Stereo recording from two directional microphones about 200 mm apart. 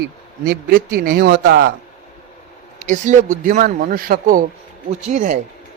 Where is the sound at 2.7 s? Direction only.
40° right (ahead or behind).